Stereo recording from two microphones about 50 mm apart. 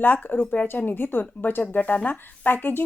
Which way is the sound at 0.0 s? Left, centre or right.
Left.